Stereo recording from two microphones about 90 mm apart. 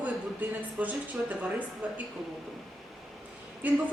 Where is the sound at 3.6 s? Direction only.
20° right (ahead or behind).